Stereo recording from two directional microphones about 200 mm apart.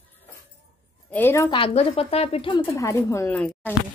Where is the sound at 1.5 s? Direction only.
30° left (ahead or behind).